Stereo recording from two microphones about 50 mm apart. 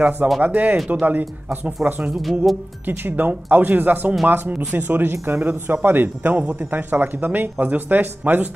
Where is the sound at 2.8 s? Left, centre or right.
Right.